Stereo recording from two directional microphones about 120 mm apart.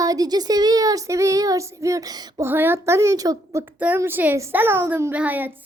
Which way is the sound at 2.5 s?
20° right (ahead or behind).